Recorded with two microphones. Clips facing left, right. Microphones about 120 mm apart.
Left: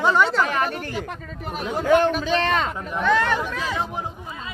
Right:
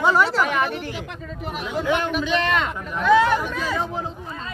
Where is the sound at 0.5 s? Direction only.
45° left (ahead or behind).